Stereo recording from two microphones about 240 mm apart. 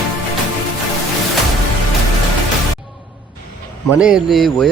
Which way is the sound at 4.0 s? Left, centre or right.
Centre.